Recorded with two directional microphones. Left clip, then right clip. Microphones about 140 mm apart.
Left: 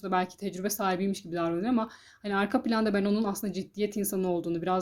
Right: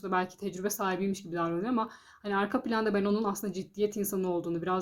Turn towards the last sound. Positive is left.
turn(degrees=30)  # may be behind; listen again after turning